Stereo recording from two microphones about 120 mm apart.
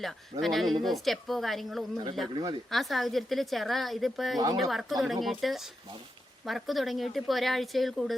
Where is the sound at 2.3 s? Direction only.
40° right (ahead or behind).